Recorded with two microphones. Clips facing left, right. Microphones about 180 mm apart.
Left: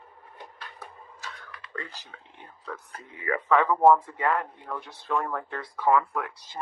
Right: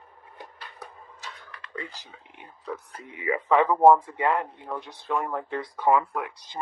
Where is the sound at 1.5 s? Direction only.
5° left (ahead or behind).